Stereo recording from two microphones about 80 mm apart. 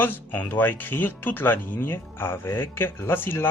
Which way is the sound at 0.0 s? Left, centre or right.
Left.